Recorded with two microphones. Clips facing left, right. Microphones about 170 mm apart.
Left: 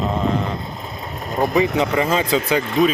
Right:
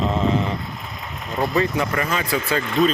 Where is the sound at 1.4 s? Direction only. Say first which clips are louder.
Left 3 dB; 20° left (ahead or behind).